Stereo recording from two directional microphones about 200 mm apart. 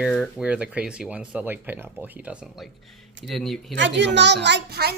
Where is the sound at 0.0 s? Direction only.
Centre (ahead or behind).